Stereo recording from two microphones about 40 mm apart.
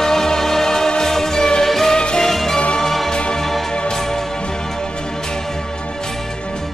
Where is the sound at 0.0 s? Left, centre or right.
Centre.